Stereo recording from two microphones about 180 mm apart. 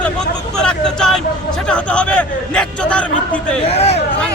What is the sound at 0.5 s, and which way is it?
Speech, 5° left (ahead or behind).